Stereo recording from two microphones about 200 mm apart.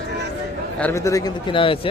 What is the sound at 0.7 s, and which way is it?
A man's voice, 10° left (ahead or behind).